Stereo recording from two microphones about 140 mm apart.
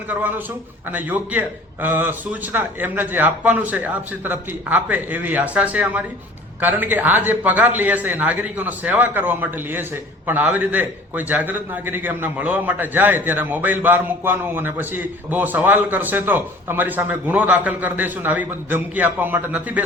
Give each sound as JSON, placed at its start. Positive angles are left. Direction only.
{"t": 0.1, "sound": "a man's voice", "side_deg": -10}